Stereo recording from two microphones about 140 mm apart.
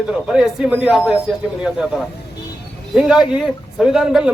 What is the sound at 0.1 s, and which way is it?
A man's voice, 5° right (ahead or behind).